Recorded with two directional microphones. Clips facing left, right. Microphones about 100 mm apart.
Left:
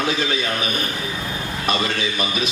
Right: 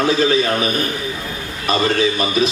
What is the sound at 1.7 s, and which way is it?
Speech, 35° right (ahead or behind).